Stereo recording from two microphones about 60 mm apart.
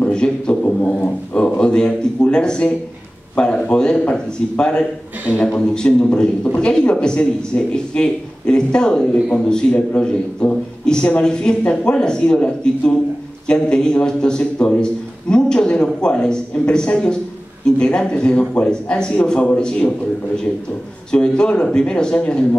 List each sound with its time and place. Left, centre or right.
0.0 s a man's voice: centre
21.1 s a man's voice: centre